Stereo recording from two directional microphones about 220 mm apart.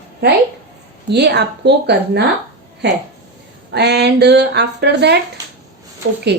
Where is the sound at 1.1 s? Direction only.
50° right (ahead or behind).